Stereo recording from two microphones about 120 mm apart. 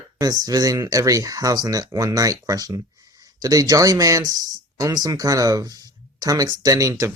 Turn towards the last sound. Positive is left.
turn(degrees=-25)  # may be behind; listen again after turning